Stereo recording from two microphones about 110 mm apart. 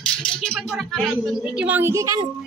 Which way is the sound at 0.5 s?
Centre (ahead or behind).